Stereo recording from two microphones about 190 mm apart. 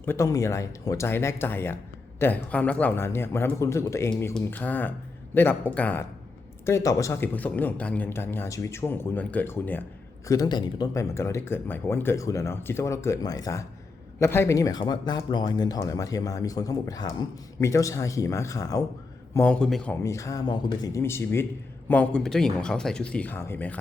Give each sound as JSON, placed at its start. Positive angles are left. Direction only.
{"t": 0.0, "sound": "speech", "side_deg": 15}